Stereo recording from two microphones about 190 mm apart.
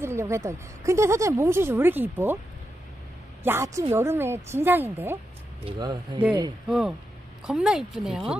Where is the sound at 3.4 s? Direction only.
15° right (ahead or behind).